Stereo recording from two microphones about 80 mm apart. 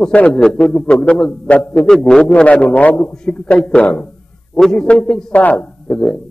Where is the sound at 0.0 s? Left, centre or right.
Centre.